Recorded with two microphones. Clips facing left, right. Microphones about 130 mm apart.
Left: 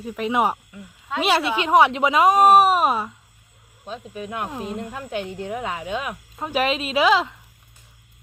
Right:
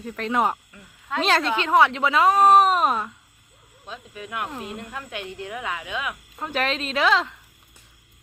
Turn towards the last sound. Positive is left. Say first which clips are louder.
# left 3 dB
turn(degrees=10)  # may be behind; listen again after turning